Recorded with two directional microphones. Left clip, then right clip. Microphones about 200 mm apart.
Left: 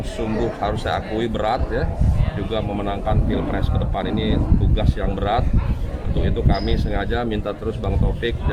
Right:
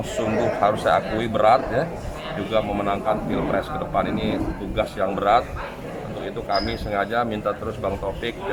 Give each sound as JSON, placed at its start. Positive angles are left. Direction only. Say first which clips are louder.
{"t": 0.6, "sound": "speech", "louder": "right 4 dB", "side_deg": 20}